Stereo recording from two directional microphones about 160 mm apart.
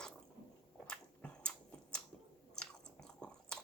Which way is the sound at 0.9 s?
5° left (ahead or behind).